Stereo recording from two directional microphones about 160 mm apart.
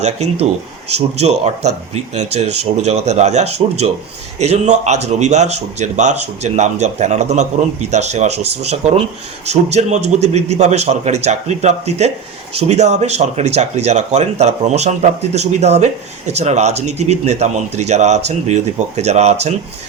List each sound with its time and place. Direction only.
0.0 s speech: 45° right (ahead or behind)